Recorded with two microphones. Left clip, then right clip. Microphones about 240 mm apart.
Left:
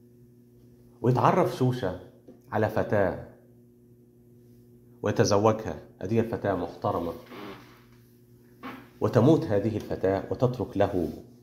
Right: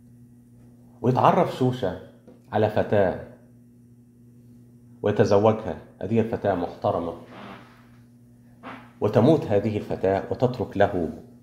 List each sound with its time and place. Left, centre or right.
1.0 s speech: centre
5.0 s speech: centre
9.0 s speech: centre